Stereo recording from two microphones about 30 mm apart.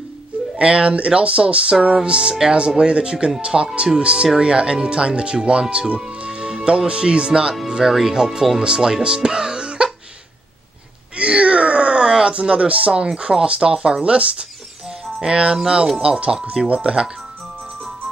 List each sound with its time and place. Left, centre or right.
0.6 s speech: right
6.0 s music: right
6.9 s speech: right
7.9 s speech: centre
11.1 s wail: right
12.1 s a sound: right
12.4 s speech: right
16.0 s speech: right